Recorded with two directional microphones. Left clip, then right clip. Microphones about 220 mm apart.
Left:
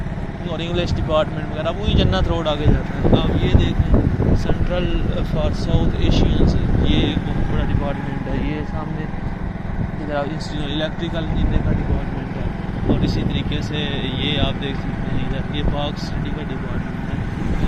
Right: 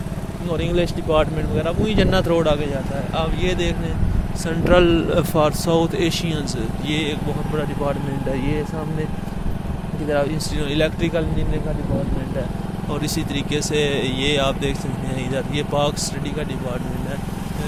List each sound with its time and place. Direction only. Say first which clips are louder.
0.5 s speech: right 3 dB; 40° right (ahead or behind)
10.8 s speech: right 5 dB; 50° right (ahead or behind)
13.0 s speech: left 1 dB; 40° right (ahead or behind)